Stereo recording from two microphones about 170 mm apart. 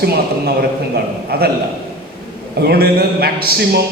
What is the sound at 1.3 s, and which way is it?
Speech, 65° right (ahead or behind).